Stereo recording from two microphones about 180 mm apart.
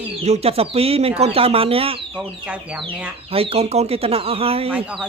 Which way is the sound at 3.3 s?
35° right (ahead or behind).